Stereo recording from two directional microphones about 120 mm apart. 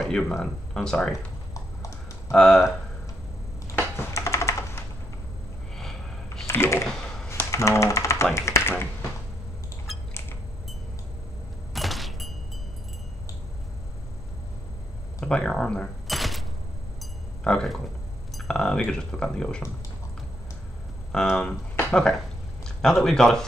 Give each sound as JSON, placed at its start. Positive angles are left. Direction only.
{"t": 0.0, "sound": "speech", "side_deg": 5}
{"t": 1.5, "sound": "typing", "side_deg": 25}
{"t": 2.3, "sound": "speech", "side_deg": 5}
{"t": 4.1, "sound": "computer keyboard", "side_deg": 25}
{"t": 5.8, "sound": "a sound", "side_deg": 5}
{"t": 6.4, "sound": "typing", "side_deg": 20}
{"t": 8.4, "sound": "computer keyboard", "side_deg": 20}
{"t": 11.7, "sound": "a sound", "side_deg": 0}
{"t": 15.1, "sound": "a sound", "side_deg": 5}
{"t": 18.3, "sound": "speech", "side_deg": 5}
{"t": 21.1, "sound": "speech", "side_deg": 5}